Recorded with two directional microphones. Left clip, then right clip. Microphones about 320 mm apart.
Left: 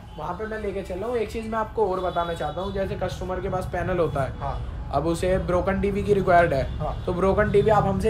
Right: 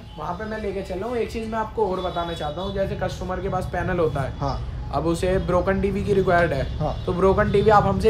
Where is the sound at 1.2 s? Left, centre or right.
Centre.